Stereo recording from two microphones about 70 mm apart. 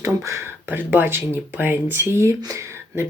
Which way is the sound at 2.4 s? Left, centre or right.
Right.